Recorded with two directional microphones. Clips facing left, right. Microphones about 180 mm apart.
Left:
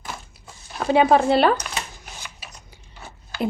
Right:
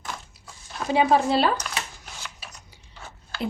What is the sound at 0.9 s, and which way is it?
Speech, 60° left (ahead or behind).